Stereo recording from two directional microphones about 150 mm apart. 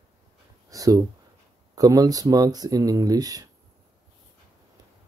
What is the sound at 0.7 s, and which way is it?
Speech, 25° right (ahead or behind).